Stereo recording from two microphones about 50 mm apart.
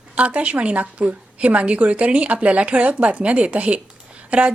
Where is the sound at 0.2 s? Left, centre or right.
Right.